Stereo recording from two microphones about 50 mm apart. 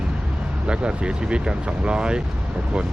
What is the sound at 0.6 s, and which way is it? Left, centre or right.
Speech, right.